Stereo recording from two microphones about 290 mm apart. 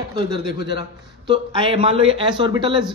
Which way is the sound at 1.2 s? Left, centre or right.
Centre.